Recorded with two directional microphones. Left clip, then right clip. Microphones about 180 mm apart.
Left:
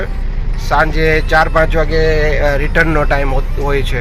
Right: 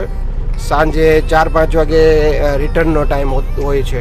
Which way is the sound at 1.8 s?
30° right (ahead or behind).